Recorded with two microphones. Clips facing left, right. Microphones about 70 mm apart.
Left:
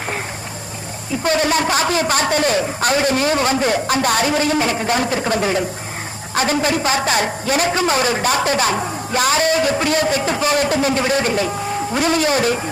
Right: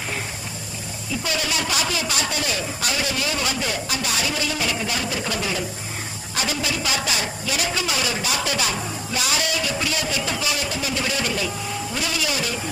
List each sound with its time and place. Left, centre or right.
1.2 s a woman's voice: left